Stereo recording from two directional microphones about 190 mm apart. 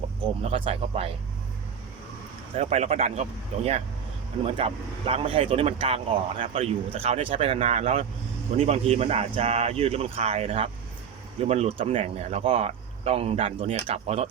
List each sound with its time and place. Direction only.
0.4 s speech: 30° right (ahead or behind)
2.6 s speech: 35° right (ahead or behind)